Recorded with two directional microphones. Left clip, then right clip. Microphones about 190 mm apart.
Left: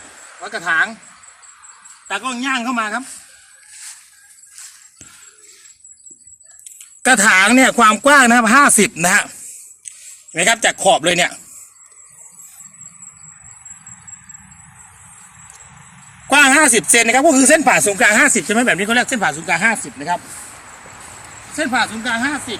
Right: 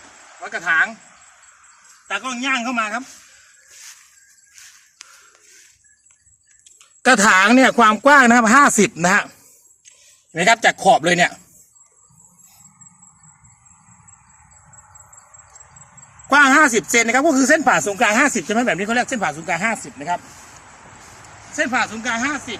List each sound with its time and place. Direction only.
0.4 s speech: centre (ahead or behind)
2.0 s speech: 5° right (ahead or behind)
4.6 s squeak: centre (ahead or behind)
6.7 s speech: 30° right (ahead or behind)
10.3 s speech: 25° right (ahead or behind)
16.3 s speech: 10° left (ahead or behind)
18.9 s speech: 20° right (ahead or behind); by 20.2 s 5° right (ahead or behind)
21.5 s speech: centre (ahead or behind)